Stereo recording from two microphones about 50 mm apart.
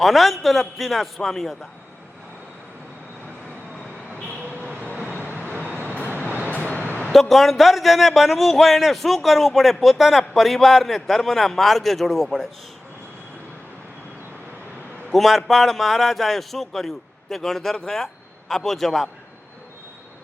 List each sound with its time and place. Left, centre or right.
0.0 s a man's voice: centre
4.2 s vehicle: left
6.5 s vehicle: left
7.1 s a man's voice: centre
15.1 s a man's voice: centre